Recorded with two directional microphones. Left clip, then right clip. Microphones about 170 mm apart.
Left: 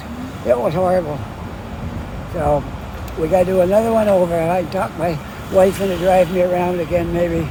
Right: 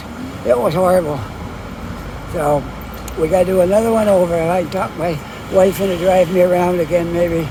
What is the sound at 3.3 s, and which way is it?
Speech, 10° right (ahead or behind).